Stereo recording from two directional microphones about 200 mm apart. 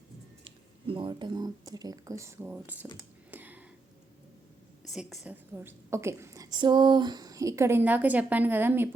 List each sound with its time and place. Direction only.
0.4 s speech: 25° right (ahead or behind); by 2.7 s 10° right (ahead or behind)
3.3 s a sound: 10° right (ahead or behind)
4.9 s a woman's voice: centre (ahead or behind)